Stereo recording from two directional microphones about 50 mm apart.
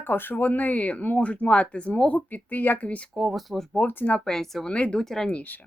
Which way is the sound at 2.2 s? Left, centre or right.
Left.